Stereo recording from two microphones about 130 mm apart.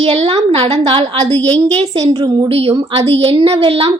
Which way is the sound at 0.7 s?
30° right (ahead or behind).